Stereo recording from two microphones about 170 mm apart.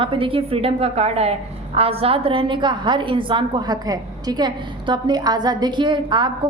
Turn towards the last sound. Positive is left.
turn(degrees=-25)  # may be behind; listen again after turning